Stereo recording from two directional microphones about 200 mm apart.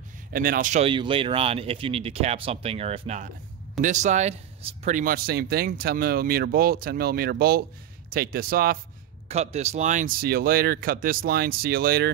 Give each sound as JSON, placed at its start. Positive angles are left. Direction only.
{"t": 0.3, "sound": "speech", "side_deg": -45}
{"t": 0.8, "sound": "speech", "side_deg": -25}
{"t": 9.3, "sound": "speech", "side_deg": -30}